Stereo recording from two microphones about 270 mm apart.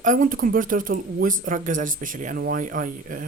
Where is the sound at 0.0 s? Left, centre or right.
Right.